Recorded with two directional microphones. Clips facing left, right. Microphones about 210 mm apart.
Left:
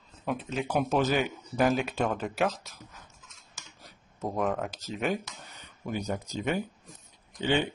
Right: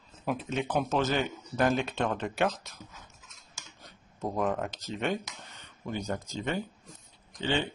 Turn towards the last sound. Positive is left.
turn(degrees=10)  # may be behind; listen again after turning